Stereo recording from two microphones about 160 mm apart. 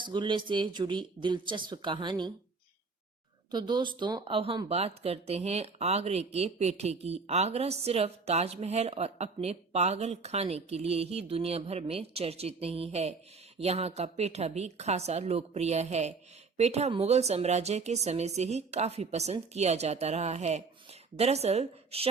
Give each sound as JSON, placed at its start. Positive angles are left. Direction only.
{"t": 0.0, "sound": "speech", "side_deg": -30}
{"t": 3.5, "sound": "speech", "side_deg": -25}